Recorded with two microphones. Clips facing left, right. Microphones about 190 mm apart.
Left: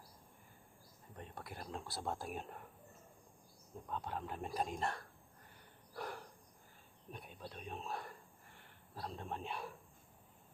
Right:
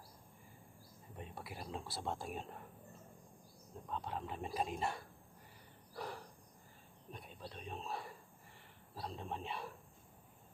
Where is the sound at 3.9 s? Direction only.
Centre (ahead or behind).